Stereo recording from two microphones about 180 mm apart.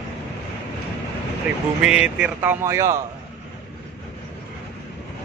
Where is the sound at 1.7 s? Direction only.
5° right (ahead or behind).